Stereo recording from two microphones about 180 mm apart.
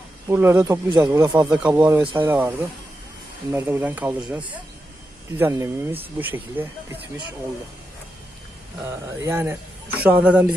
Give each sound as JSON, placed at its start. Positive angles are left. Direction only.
{"t": 0.3, "sound": "a man's voice", "side_deg": -15}
{"t": 1.5, "sound": "a man's voice", "side_deg": -5}
{"t": 3.5, "sound": "a man's voice", "side_deg": -10}
{"t": 9.2, "sound": "a man's voice", "side_deg": -15}